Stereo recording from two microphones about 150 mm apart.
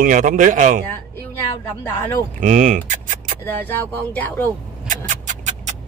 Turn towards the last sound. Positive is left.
turn(degrees=-55)  # may be behind; listen again after turning